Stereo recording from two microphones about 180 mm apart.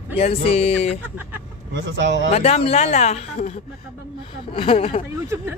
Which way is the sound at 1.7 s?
90° right.